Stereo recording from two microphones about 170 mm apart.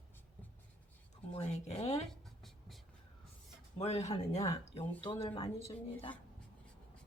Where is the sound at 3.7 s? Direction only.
40° left (ahead or behind).